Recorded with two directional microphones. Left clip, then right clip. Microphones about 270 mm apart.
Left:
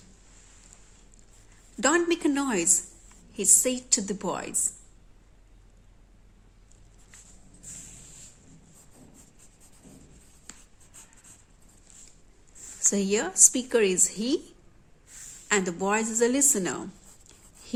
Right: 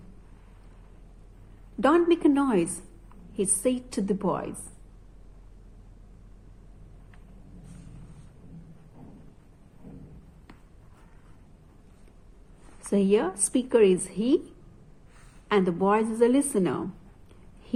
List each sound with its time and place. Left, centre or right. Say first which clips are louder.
1.8 s a woman's voice: right 3 dB; centre
12.9 s a woman's voice: right 5 dB; centre
15.4 s a woman's voice: right 3 dB; centre